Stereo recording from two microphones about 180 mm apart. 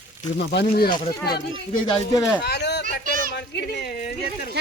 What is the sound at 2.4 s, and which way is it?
Speech, 65° left (ahead or behind).